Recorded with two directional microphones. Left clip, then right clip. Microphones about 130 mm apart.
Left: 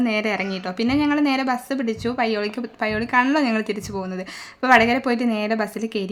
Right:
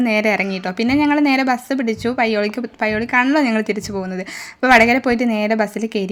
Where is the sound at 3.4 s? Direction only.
30° right (ahead or behind).